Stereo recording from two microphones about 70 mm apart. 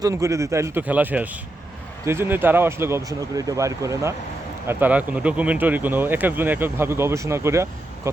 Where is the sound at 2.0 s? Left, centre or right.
Right.